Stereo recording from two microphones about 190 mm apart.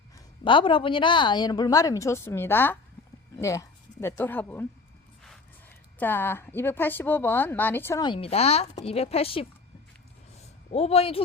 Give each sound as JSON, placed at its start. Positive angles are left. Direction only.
{"t": 0.4, "sound": "a woman's voice", "side_deg": 25}
{"t": 8.0, "sound": "speech", "side_deg": 30}
{"t": 10.7, "sound": "speech", "side_deg": 30}